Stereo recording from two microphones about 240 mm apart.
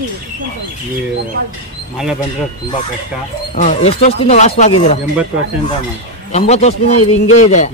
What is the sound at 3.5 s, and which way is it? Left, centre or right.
Speech, left.